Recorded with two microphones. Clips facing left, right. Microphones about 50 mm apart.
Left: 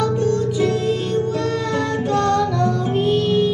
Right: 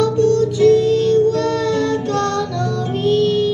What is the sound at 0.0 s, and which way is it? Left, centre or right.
Music, centre.